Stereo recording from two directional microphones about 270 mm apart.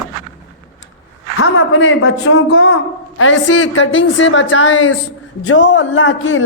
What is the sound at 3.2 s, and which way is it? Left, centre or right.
A woman's voice, left.